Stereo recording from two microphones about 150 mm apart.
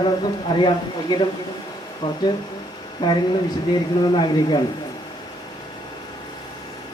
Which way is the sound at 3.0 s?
30° left (ahead or behind).